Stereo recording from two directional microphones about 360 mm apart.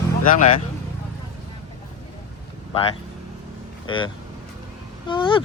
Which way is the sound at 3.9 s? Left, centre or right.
Centre.